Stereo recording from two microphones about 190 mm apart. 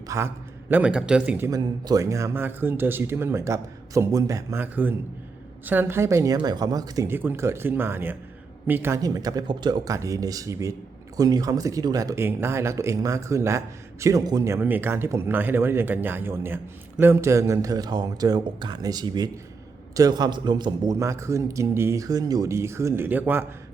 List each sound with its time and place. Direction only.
0.1 s speech: 15° right (ahead or behind)
0.7 s speech: 5° right (ahead or behind)
1.5 s speech: 20° right (ahead or behind)